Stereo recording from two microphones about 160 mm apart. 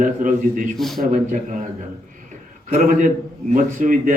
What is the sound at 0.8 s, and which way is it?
Speech, centre (ahead or behind).